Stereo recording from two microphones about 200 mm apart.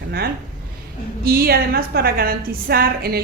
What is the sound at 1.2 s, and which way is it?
A woman's voice, 50° right (ahead or behind).